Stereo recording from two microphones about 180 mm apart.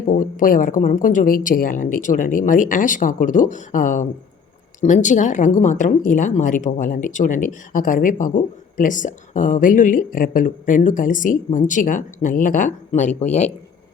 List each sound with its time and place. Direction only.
0.1 s speech: 45° left (ahead or behind)